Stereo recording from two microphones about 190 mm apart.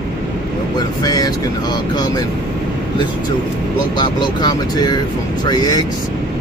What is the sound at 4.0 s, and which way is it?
Speech, 20° left (ahead or behind).